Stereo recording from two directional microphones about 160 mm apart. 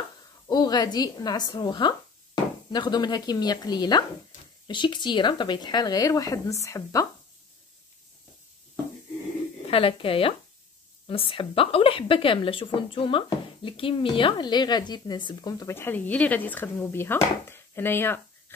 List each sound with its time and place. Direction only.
0.5 s a woman's voice: 25° left (ahead or behind)
9.7 s a woman's voice: 35° left (ahead or behind); by 18.2 s 15° left (ahead or behind)